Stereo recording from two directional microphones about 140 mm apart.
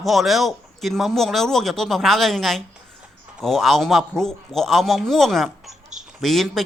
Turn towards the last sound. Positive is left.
turn(degrees=0)  # may be behind; listen again after turning